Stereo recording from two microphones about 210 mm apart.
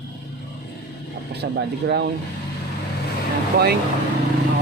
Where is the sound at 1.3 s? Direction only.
50° right (ahead or behind).